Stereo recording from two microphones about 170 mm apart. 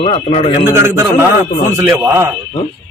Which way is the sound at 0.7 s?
15° right (ahead or behind).